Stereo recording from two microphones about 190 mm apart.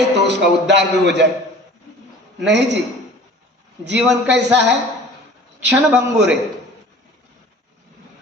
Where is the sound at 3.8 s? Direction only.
65° right (ahead or behind).